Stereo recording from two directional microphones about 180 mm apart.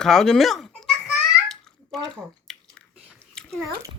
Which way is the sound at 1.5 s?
Centre (ahead or behind).